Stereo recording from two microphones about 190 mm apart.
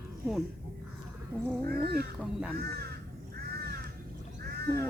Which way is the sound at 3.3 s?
55° right (ahead or behind).